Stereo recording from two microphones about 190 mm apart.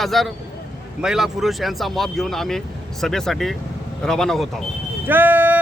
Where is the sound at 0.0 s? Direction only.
Centre (ahead or behind).